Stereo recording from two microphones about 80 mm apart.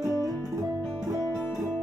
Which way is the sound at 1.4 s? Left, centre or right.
Centre.